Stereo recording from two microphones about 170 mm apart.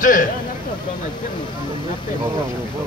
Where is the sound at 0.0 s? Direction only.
50° left (ahead or behind).